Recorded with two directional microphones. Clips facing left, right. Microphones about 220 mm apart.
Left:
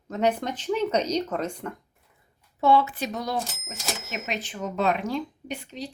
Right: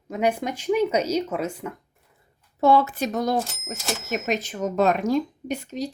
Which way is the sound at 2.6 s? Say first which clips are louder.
Right 2 dB; 40° right (ahead or behind).